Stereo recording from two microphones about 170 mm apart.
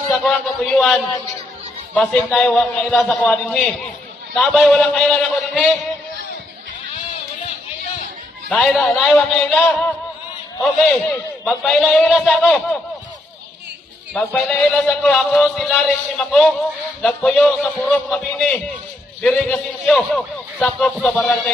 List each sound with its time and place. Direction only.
0.2 s a man's voice: 5° left (ahead or behind)
8.5 s speech: 5° left (ahead or behind)
11.4 s speech: centre (ahead or behind)
14.1 s a man's voice: 5° left (ahead or behind)